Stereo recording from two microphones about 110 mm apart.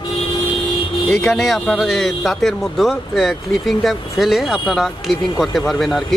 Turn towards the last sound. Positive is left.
turn(degrees=0)  # may be behind; listen again after turning